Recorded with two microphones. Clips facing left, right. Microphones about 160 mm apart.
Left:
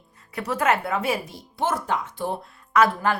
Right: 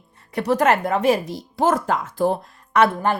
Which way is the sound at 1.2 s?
90° right.